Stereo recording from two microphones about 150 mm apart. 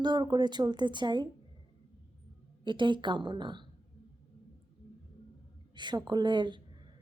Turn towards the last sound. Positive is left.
turn(degrees=-30)  # may be behind; listen again after turning